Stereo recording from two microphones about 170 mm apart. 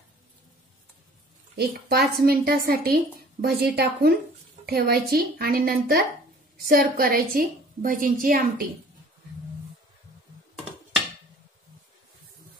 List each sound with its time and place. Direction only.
1.6 s speech: 65° right (ahead or behind)